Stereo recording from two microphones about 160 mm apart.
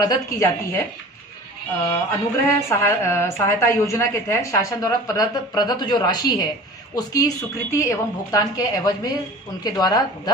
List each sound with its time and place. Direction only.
0.0 s a woman's voice: 20° left (ahead or behind)
1.9 s a woman's voice: 15° left (ahead or behind)